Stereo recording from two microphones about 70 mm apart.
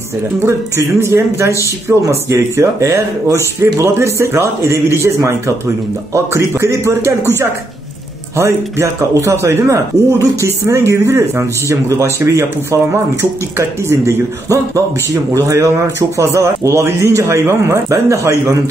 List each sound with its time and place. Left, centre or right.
0.4 s speech: right
8.4 s speech: right